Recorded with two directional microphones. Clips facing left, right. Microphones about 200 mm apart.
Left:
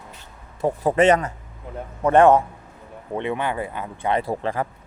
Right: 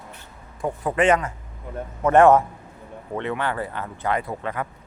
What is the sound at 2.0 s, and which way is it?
A man's voice, 25° left (ahead or behind).